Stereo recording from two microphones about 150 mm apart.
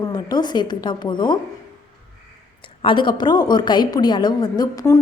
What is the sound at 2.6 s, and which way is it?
A woman's voice, 35° left (ahead or behind).